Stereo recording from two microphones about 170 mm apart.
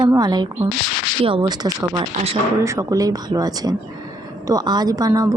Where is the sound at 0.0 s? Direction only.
25° right (ahead or behind).